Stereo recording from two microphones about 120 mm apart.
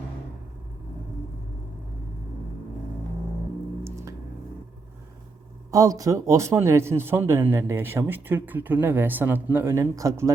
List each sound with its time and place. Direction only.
5.7 s speech: 30° right (ahead or behind)